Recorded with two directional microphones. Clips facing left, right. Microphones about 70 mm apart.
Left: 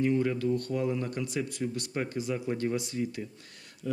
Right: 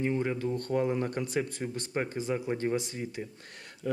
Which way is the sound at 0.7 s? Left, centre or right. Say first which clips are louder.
Right 2 dB; right.